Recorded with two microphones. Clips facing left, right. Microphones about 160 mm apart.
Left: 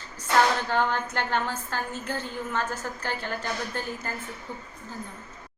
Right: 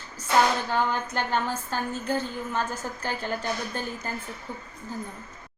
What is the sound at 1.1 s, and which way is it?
A woman's voice, 15° right (ahead or behind).